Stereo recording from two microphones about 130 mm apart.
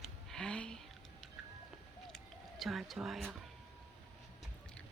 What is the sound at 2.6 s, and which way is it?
Speech, centre (ahead or behind).